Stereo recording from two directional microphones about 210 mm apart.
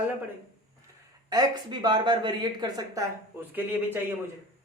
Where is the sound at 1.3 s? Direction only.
20° right (ahead or behind).